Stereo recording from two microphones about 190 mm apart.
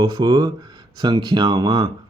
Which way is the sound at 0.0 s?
20° right (ahead or behind).